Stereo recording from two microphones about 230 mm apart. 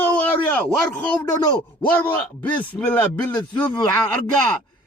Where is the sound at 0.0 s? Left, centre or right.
Centre.